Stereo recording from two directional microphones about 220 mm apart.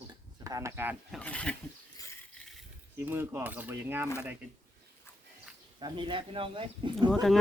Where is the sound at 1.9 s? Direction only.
10° left (ahead or behind).